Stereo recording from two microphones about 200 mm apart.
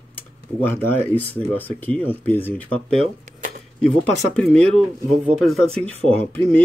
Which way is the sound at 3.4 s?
45° right (ahead or behind).